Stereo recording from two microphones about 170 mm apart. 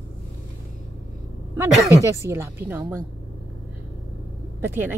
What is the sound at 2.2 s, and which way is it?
Speech, 15° right (ahead or behind).